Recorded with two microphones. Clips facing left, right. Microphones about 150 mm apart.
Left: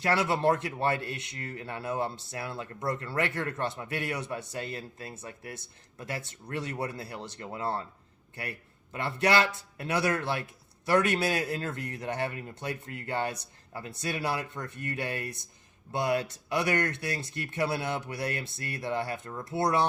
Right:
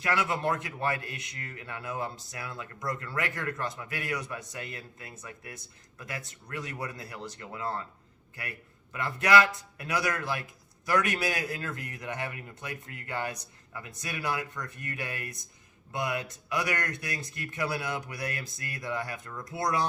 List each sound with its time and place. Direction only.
0.0 s a man's voice: 30° left (ahead or behind)